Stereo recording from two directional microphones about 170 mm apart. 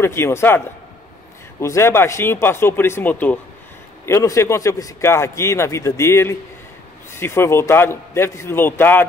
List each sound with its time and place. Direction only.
0.0 s a man's voice: 15° left (ahead or behind)
1.6 s a man's voice: 15° left (ahead or behind)